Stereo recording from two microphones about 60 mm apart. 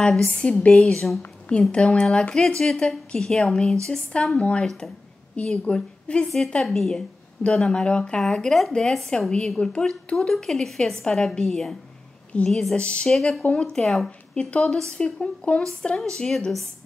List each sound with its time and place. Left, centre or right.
0.0 s speech: centre
0.4 s speech: centre
0.7 s a woman's voice: centre
4.6 s a woman's voice: centre
5.3 s a woman's voice: centre
6.6 s a woman's voice: centre
12.7 s speech: centre
13.1 s speech: centre
13.5 s a woman's voice: centre
13.8 s speech: centre
14.3 s a woman's voice: centre